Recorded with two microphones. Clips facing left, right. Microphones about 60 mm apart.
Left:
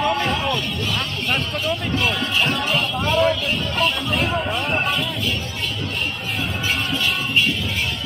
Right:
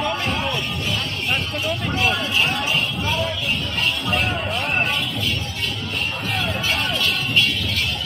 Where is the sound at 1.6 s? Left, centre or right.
Centre.